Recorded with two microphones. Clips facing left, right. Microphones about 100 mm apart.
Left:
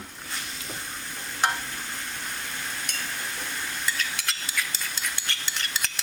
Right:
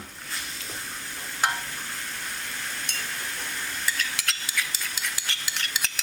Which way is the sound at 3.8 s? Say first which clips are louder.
Even; centre (ahead or behind).